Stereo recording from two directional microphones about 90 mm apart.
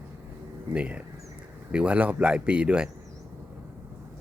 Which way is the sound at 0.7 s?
15° right (ahead or behind).